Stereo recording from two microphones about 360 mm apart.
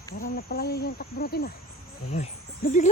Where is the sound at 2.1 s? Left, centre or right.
Left.